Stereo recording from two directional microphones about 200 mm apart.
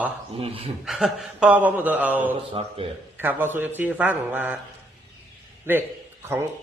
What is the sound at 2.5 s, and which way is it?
Speech, 30° right (ahead or behind).